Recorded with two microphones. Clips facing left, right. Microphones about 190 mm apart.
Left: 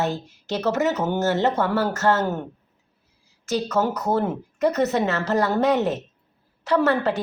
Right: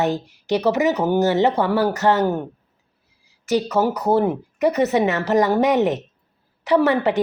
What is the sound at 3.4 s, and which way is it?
Speech, 15° right (ahead or behind).